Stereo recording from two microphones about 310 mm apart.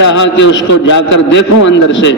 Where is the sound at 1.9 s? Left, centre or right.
Left.